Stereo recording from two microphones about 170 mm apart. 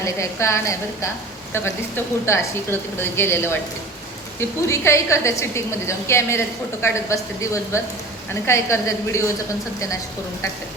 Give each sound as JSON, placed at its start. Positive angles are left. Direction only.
{"t": 0.0, "sound": "speech", "side_deg": 15}